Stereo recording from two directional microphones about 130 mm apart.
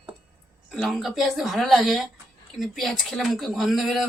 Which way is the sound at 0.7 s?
Centre (ahead or behind).